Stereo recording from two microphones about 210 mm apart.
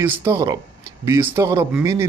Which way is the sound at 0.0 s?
10° right (ahead or behind).